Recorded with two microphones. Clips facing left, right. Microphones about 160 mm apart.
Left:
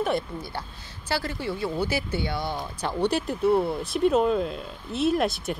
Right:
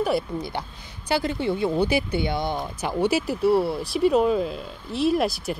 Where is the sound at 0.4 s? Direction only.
20° right (ahead or behind).